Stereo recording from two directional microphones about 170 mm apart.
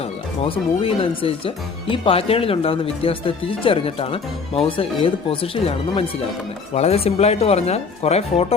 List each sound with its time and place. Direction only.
0.0 s speech: 35° left (ahead or behind)